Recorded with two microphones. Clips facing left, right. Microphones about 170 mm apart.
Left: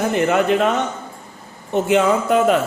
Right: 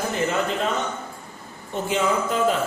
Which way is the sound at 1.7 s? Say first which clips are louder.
Left 7 dB; 65° left (ahead or behind).